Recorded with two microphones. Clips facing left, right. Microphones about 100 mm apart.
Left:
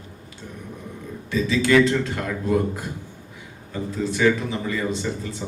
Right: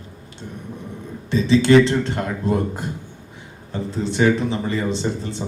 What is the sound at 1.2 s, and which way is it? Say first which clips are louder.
A man's voice: right 5 dB; 25° right (ahead or behind).